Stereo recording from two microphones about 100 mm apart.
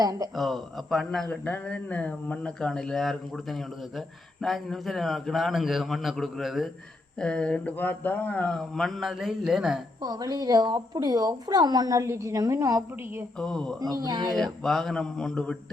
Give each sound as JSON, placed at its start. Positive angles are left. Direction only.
{"t": 0.0, "sound": "a woman's voice", "side_deg": -40}
{"t": 0.3, "sound": "speech", "side_deg": 0}
{"t": 1.3, "sound": "speech", "side_deg": 15}
{"t": 7.2, "sound": "speech", "side_deg": 10}
{"t": 8.5, "sound": "speech", "side_deg": 5}
{"t": 10.0, "sound": "a woman's voice", "side_deg": -45}
{"t": 13.4, "sound": "speech", "side_deg": 5}
{"t": 13.7, "sound": "a woman's voice", "side_deg": -40}
{"t": 14.3, "sound": "speech", "side_deg": 5}